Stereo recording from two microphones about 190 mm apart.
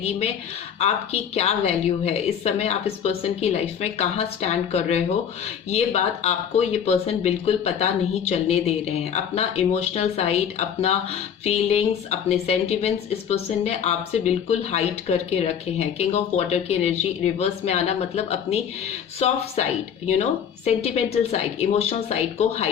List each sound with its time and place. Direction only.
0.0 s speech: 35° left (ahead or behind)